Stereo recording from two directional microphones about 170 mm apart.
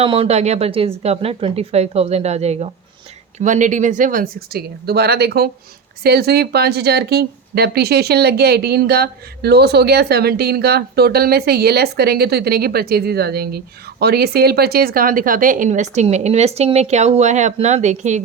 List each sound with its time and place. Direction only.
0.0 s speech: 35° right (ahead or behind)